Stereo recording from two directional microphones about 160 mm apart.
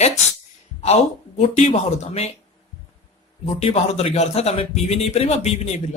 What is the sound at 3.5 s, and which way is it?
A man's voice, 40° left (ahead or behind).